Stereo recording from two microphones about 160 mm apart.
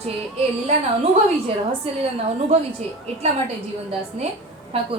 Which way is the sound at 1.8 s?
35° right (ahead or behind).